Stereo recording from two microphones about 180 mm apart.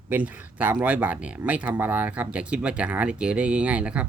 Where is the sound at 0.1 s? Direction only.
10° right (ahead or behind).